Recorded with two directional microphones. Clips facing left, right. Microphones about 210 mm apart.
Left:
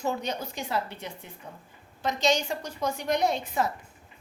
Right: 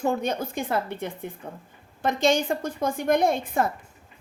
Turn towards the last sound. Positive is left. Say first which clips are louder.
# right 4 dB
turn(degrees=-50)  # may be behind; listen again after turning